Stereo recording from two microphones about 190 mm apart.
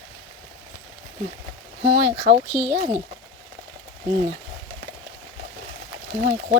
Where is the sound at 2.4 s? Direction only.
20° left (ahead or behind).